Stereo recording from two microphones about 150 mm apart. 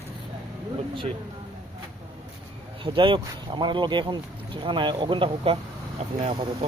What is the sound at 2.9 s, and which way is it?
Speech, 35° right (ahead or behind).